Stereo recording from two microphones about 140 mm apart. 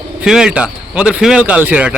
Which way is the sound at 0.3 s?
5° right (ahead or behind).